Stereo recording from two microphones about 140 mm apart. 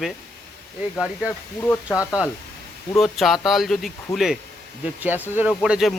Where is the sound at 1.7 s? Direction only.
15° left (ahead or behind).